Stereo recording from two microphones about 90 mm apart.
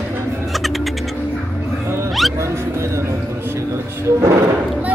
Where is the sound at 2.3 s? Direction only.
30° right (ahead or behind).